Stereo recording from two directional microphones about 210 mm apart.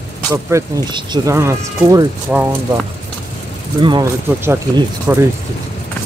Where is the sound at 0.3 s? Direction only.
15° right (ahead or behind).